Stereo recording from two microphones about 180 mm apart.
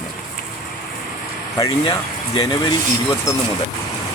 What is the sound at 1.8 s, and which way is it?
Speech, 30° left (ahead or behind).